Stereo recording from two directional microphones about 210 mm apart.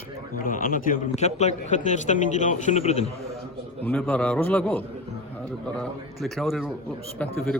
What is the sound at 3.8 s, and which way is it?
A man's voice, 10° left (ahead or behind).